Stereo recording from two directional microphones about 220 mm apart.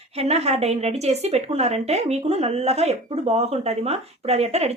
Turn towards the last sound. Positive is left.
turn(degrees=-30)  # may be behind; listen again after turning